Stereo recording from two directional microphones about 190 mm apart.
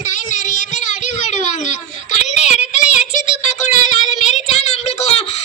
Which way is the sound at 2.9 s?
40° left (ahead or behind).